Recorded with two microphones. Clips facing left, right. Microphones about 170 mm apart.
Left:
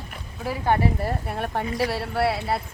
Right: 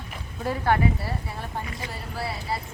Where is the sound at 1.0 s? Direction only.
60° left (ahead or behind).